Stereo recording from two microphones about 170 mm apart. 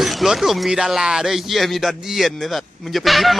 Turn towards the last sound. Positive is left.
turn(degrees=0)  # may be behind; listen again after turning